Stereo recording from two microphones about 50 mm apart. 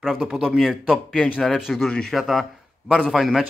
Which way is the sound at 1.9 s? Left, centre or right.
Centre.